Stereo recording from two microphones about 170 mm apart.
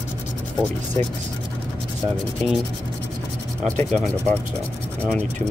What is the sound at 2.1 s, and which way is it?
Sanding, centre (ahead or behind).